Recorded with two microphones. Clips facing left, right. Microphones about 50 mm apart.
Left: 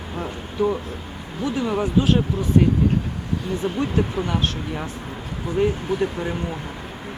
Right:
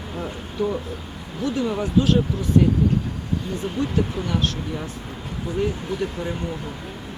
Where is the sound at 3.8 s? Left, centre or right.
Left.